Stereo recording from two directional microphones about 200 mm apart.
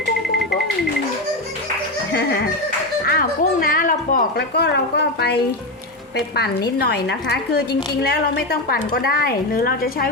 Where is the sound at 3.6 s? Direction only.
45° left (ahead or behind).